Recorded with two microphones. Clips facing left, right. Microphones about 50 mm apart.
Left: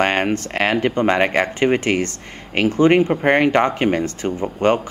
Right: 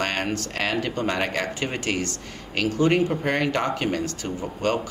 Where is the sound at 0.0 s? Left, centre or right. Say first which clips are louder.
Left 8 dB; left.